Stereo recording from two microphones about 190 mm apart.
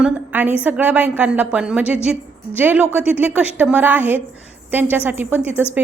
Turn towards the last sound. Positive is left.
turn(degrees=-10)  # may be behind; listen again after turning